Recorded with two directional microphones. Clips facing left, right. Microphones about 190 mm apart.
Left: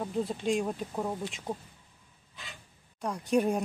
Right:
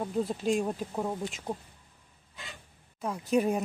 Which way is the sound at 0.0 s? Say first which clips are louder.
Right 1 dB; centre (ahead or behind).